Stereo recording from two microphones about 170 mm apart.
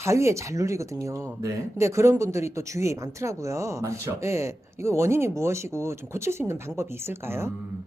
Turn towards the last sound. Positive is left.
turn(degrees=-15)  # may be behind; listen again after turning